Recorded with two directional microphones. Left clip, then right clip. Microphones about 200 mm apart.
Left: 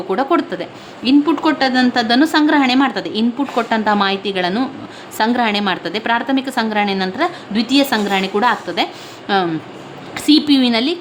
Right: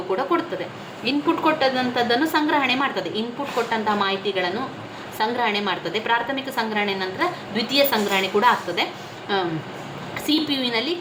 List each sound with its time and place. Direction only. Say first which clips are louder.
0.1 s a woman's voice: left 6 dB; 50° left (ahead or behind)